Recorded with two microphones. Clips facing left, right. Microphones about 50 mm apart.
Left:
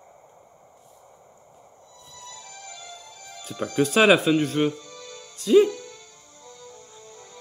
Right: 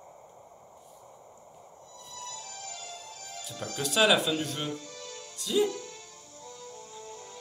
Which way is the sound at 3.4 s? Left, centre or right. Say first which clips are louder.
Left 11 dB; left.